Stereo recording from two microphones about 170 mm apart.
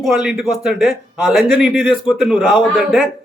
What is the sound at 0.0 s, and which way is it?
A man's voice, centre (ahead or behind).